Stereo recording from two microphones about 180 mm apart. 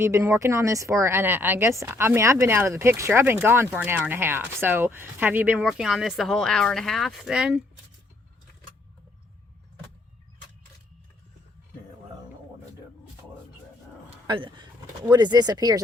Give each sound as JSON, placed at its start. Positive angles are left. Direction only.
{"t": 0.0, "sound": "speech", "side_deg": -15}
{"t": 14.3, "sound": "speech", "side_deg": -25}